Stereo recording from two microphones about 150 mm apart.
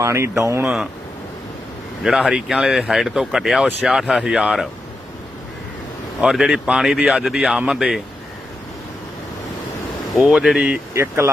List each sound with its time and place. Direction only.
0.0 s speech: 20° right (ahead or behind)
0.6 s speech: 5° right (ahead or behind)
2.0 s speech: 5° right (ahead or behind)
6.2 s speech: 5° right (ahead or behind)
10.2 s speech: centre (ahead or behind)
10.9 s speech: 15° right (ahead or behind)